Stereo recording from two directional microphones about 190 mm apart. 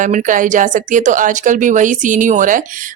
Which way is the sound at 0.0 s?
45° right (ahead or behind).